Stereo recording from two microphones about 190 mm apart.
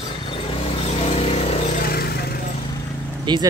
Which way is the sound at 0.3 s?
30° left (ahead or behind).